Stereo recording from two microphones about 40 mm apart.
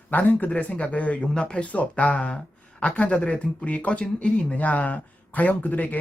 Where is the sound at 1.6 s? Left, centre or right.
Left.